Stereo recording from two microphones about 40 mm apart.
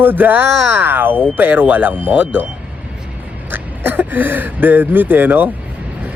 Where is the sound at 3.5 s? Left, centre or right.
Right.